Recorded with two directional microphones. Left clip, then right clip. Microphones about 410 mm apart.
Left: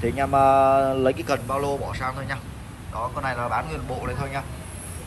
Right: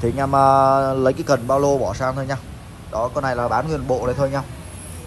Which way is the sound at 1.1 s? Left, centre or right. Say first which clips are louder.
Right 7 dB; centre.